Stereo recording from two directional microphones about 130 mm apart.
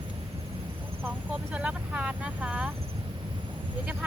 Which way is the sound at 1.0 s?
10° right (ahead or behind).